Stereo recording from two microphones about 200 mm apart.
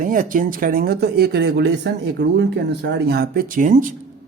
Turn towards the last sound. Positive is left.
turn(degrees=-40)  # may be behind; listen again after turning